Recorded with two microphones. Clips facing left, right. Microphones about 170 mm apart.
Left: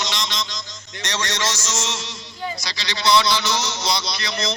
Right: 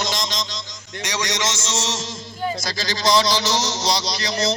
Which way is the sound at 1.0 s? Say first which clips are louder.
Right 1 dB; 15° right (ahead or behind).